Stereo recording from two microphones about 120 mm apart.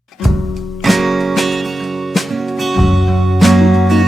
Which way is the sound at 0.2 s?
Centre (ahead or behind).